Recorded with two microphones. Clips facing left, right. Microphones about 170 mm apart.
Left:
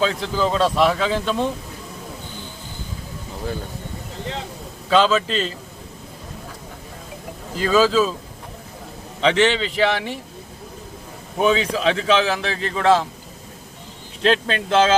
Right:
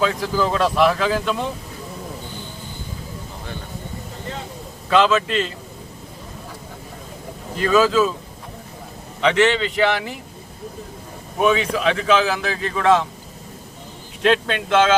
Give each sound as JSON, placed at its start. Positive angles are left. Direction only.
{"t": 0.0, "sound": "a man's voice", "side_deg": 25}
{"t": 4.9, "sound": "a man's voice", "side_deg": 30}
{"t": 7.6, "sound": "a man's voice", "side_deg": 30}
{"t": 9.2, "sound": "a man's voice", "side_deg": 30}
{"t": 11.4, "sound": "a man's voice", "side_deg": 30}
{"t": 14.2, "sound": "a man's voice", "side_deg": 30}